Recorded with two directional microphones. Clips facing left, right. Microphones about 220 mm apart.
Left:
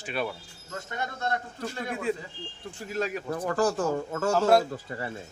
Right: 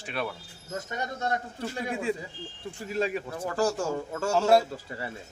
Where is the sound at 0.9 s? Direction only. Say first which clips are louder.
Even; 15° right (ahead or behind).